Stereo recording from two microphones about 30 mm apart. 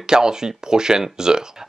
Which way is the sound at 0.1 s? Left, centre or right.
Right.